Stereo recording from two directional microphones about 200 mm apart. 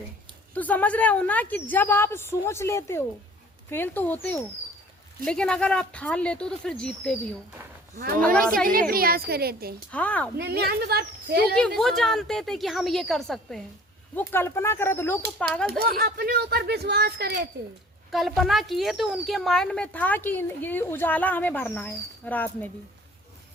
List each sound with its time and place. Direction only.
0.5 s speech: 10° left (ahead or behind)
8.2 s speech: 5° left (ahead or behind)
8.6 s speech: 45° right (ahead or behind)
9.9 s speech: 5° left (ahead or behind)
10.3 s speech: 50° right (ahead or behind)
11.8 s speech: centre (ahead or behind)
15.8 s speech: 50° right (ahead or behind)
18.1 s speech: centre (ahead or behind)